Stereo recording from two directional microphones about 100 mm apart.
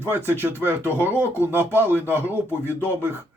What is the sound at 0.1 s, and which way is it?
Speech, 20° right (ahead or behind).